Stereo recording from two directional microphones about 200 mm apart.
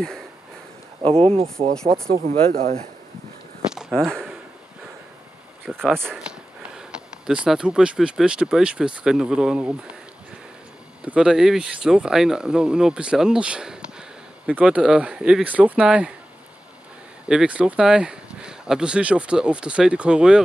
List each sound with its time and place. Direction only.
1.0 s speech: 30° right (ahead or behind)
3.7 s a sound: 5° left (ahead or behind)
5.7 s speech: centre (ahead or behind)
11.1 s speech: 5° right (ahead or behind)
17.3 s speech: 5° right (ahead or behind)